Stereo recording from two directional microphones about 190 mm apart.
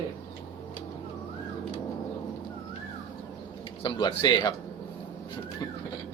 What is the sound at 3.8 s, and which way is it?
Speech, 25° left (ahead or behind).